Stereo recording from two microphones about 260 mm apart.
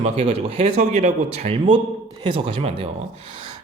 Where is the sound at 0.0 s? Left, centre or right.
Right.